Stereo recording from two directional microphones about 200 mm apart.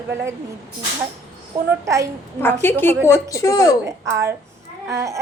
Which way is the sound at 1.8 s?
15° right (ahead or behind).